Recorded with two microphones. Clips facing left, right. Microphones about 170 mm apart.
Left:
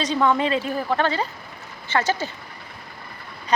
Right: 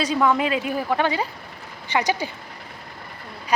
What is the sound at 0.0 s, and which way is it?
A woman's voice, 5° right (ahead or behind).